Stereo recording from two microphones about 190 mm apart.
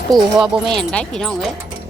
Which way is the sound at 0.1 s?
5° right (ahead or behind).